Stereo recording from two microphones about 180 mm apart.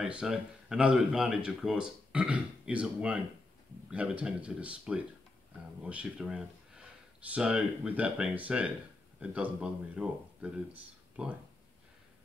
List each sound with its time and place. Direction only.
0.0 s speech: 5° right (ahead or behind)